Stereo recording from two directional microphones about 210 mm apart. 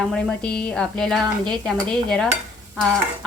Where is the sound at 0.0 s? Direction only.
5° left (ahead or behind).